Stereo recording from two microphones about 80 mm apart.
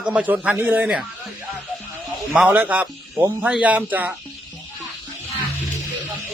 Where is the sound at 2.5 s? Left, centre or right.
Centre.